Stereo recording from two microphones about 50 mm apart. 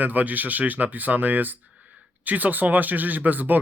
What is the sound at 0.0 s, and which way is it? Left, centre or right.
Speech, right.